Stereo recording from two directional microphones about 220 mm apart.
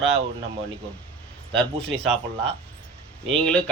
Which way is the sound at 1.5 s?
5° left (ahead or behind).